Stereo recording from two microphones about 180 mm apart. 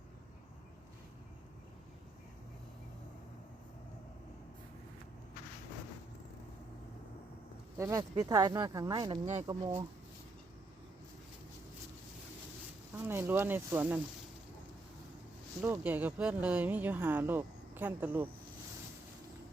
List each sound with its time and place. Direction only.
7.8 s speech: 20° right (ahead or behind)
13.1 s speech: 10° right (ahead or behind)
15.6 s speech: 15° right (ahead or behind)